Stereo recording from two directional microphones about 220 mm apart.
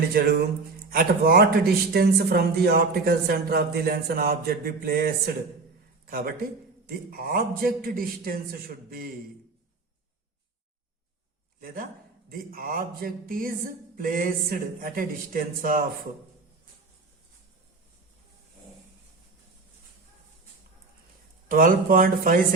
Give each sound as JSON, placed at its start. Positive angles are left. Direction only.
{"t": 0.1, "sound": "speech", "side_deg": -45}
{"t": 11.6, "sound": "speech", "side_deg": -40}
{"t": 21.5, "sound": "speech", "side_deg": -40}